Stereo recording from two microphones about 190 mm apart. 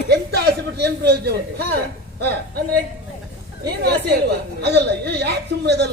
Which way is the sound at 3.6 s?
60° right (ahead or behind).